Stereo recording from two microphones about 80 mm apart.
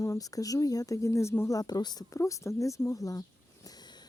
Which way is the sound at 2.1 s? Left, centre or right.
Left.